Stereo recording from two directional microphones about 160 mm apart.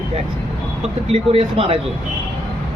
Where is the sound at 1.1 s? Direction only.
35° right (ahead or behind).